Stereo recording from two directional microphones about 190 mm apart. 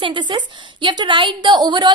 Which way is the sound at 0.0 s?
25° right (ahead or behind).